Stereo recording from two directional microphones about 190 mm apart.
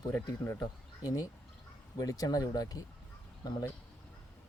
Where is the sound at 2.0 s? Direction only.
20° left (ahead or behind).